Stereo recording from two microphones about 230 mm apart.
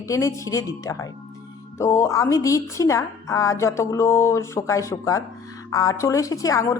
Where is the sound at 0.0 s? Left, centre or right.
Centre.